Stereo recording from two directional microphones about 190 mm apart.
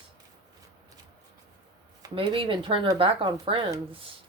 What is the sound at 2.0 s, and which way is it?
Speech, 25° right (ahead or behind).